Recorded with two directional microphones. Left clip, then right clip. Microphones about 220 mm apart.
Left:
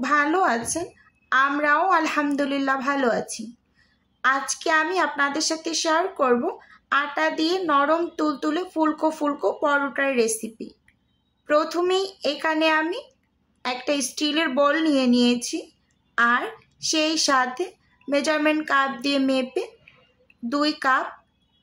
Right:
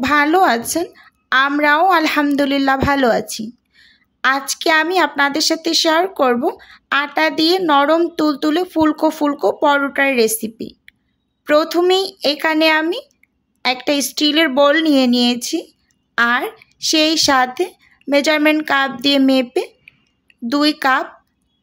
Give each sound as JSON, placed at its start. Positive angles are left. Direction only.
{"t": 0.0, "sound": "a woman's voice", "side_deg": -40}